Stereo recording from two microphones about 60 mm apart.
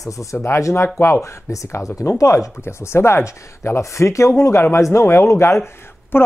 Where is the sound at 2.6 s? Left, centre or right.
Left.